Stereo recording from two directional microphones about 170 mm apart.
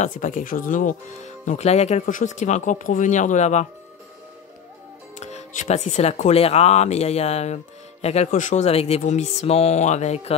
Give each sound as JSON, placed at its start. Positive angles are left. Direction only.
{"t": 0.0, "sound": "speech", "side_deg": 50}
{"t": 5.2, "sound": "speech", "side_deg": 40}